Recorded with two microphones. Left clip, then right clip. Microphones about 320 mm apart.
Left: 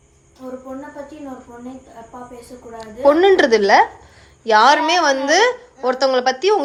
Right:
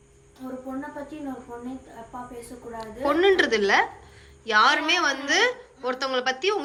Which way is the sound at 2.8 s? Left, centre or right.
Centre.